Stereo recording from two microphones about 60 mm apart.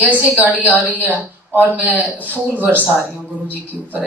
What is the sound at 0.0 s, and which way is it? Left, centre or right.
Speech, right.